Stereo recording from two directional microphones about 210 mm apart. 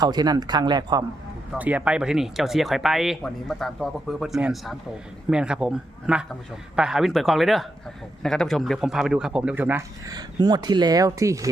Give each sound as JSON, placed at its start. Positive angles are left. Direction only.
{"t": 0.0, "sound": "speech", "side_deg": -20}
{"t": 1.5, "sound": "a man's voice", "side_deg": -5}